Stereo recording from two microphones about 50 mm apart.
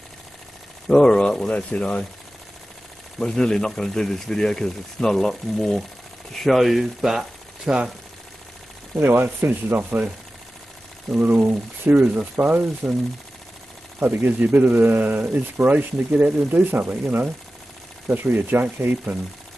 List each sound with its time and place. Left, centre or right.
0.8 s speech: centre
3.2 s speech: centre
9.0 s speech: right
11.1 s speech: right
12.0 s speech: right